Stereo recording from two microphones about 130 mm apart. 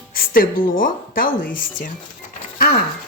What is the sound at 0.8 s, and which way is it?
Speech, 90° left.